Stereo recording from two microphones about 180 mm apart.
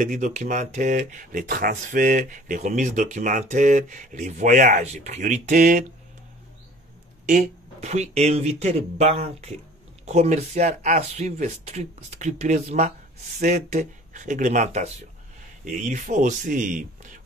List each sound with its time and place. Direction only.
0.0 s speech: 45° right (ahead or behind)
7.2 s speech: 40° right (ahead or behind)